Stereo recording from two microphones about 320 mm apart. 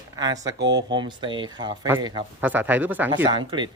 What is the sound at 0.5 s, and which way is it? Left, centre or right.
Speech, right.